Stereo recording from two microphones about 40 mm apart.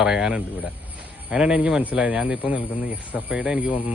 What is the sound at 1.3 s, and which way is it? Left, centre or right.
Speech, right.